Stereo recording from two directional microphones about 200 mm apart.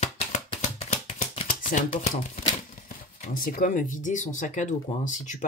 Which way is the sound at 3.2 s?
45° left (ahead or behind).